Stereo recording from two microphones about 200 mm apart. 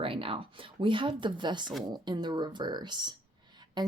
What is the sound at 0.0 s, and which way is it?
Speech, 25° right (ahead or behind).